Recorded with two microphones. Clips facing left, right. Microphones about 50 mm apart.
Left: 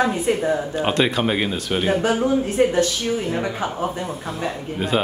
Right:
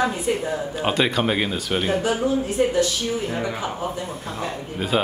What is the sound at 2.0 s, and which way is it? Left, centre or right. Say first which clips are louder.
Speech: left 2 dB; left.